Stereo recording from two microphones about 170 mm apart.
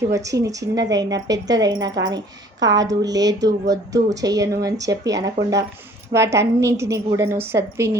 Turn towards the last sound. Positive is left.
turn(degrees=-15)  # may be behind; listen again after turning